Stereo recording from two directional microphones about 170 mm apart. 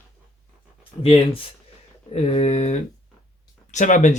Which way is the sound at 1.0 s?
35° left (ahead or behind).